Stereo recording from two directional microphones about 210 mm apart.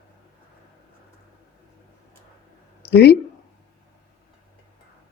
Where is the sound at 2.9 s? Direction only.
50° left (ahead or behind).